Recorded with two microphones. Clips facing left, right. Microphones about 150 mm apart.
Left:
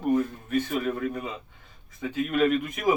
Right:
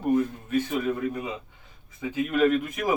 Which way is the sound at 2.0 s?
5° right (ahead or behind).